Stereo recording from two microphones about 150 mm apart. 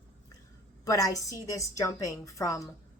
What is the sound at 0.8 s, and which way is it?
A woman's voice, 25° left (ahead or behind).